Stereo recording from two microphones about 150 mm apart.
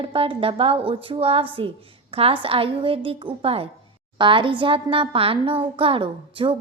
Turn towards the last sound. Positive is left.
turn(degrees=-35)  # may be behind; listen again after turning